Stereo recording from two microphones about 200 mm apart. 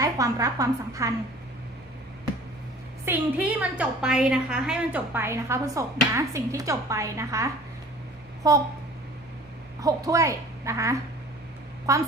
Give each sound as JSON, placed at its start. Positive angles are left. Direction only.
{"t": 0.0, "sound": "a woman's voice", "side_deg": -15}
{"t": 3.1, "sound": "a woman's voice", "side_deg": -5}
{"t": 9.8, "sound": "a woman's voice", "side_deg": -15}